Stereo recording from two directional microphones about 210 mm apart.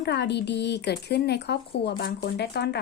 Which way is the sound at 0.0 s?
55° left (ahead or behind).